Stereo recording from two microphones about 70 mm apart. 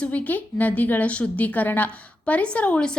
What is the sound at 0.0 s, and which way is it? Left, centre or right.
A woman's voice, left.